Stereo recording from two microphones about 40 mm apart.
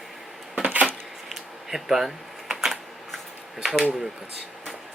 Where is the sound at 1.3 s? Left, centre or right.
Centre.